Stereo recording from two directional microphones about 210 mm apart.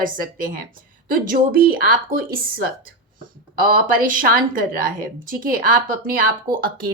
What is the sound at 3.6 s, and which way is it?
A woman's voice, 40° right (ahead or behind).